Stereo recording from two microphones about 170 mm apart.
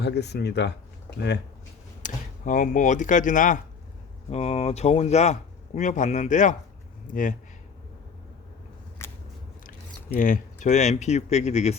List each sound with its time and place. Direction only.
0.0 s speech: 80° left
2.0 s speech: 50° left (ahead or behind)
4.3 s speech: 40° left (ahead or behind)
9.0 s scissors: 15° left (ahead or behind)
10.2 s speech: 50° left (ahead or behind)